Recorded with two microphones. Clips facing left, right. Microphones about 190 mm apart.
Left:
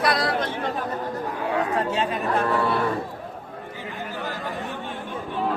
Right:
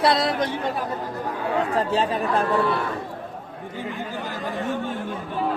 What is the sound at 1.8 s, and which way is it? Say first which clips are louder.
Speech: right 2 dB; 35° right (ahead or behind).